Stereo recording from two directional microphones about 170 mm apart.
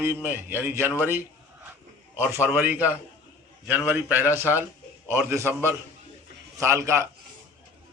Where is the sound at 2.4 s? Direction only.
10° right (ahead or behind).